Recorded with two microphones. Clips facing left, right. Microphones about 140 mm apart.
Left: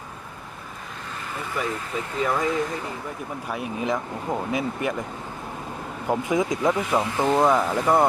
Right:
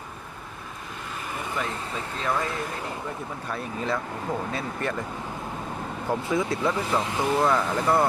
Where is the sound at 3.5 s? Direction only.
15° left (ahead or behind).